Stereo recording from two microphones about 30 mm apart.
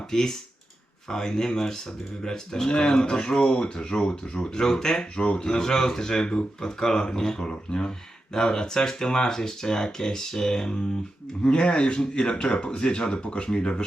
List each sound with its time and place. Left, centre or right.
0.1 s speech: centre
2.6 s speech: left
5.5 s speech: left